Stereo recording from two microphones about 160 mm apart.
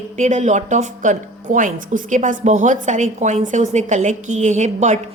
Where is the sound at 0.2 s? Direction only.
50° right (ahead or behind).